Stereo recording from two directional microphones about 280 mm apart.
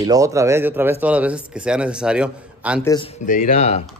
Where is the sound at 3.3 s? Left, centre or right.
Left.